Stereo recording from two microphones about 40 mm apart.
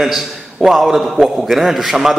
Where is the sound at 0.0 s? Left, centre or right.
Centre.